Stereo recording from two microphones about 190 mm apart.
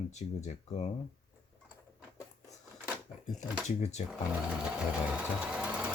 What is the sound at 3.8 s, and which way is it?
Speech, 35° left (ahead or behind).